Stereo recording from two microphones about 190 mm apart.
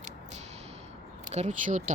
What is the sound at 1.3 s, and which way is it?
Speech, 35° right (ahead or behind).